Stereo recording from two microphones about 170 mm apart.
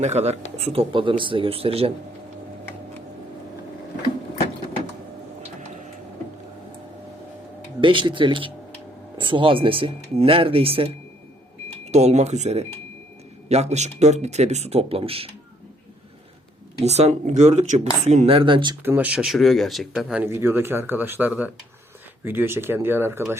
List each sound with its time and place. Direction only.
0.0 s speech: 40° right (ahead or behind)
7.8 s speech: 30° right (ahead or behind)
16.8 s speech: 40° right (ahead or behind)
18.8 s speech: 10° right (ahead or behind)
20.2 s speech: 15° right (ahead or behind)